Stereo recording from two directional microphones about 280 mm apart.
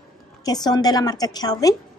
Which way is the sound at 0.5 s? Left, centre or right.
Centre.